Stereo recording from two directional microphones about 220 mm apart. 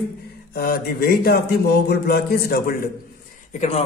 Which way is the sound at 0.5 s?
45° left (ahead or behind).